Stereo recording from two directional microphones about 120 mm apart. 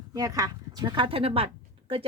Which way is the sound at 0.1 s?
30° right (ahead or behind).